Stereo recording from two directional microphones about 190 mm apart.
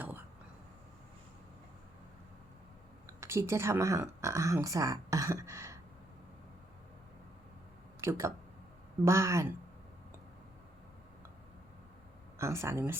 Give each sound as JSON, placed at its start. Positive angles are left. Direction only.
{"t": 3.1, "sound": "speech", "side_deg": -15}
{"t": 8.0, "sound": "speech", "side_deg": -15}
{"t": 12.4, "sound": "speech", "side_deg": -15}